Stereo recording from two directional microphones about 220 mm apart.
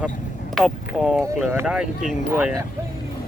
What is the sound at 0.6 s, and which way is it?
Speech, 5° right (ahead or behind).